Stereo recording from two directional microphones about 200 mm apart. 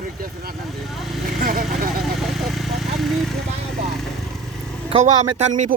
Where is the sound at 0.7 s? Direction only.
Centre (ahead or behind).